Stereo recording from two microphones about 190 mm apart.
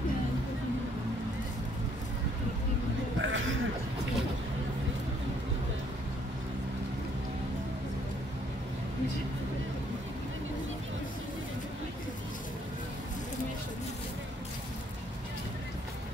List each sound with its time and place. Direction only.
3.2 s speech: 90° right